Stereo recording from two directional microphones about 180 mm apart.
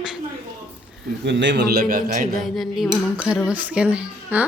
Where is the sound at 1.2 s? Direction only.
80° right; by 2.2 s 55° right (ahead or behind).